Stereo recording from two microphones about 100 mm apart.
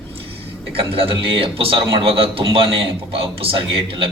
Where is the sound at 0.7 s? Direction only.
65° right (ahead or behind).